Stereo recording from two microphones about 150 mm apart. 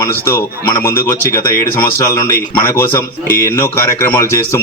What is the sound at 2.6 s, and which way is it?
Speech, 15° left (ahead or behind).